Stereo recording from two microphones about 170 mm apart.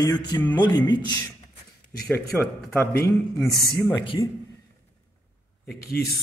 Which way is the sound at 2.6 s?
10° left (ahead or behind).